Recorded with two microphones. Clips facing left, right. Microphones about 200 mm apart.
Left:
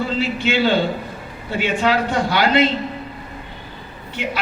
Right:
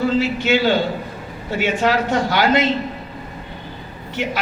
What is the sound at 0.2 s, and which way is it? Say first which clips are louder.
A man's voice: right 1 dB; 45° right (ahead or behind).